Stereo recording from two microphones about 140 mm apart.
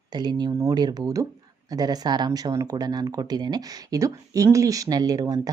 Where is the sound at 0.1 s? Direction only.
30° right (ahead or behind).